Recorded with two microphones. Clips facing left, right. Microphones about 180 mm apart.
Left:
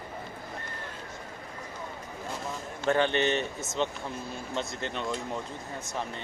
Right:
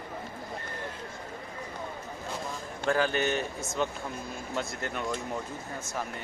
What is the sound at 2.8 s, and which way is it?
Speech, 5° right (ahead or behind).